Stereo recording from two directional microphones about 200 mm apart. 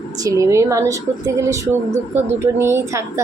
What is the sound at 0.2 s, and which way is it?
A woman's voice, 15° right (ahead or behind).